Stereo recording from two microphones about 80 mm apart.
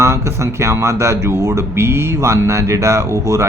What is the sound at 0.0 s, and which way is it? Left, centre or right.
Speech, right.